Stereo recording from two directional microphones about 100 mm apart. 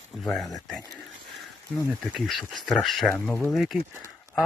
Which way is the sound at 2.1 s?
Centre (ahead or behind).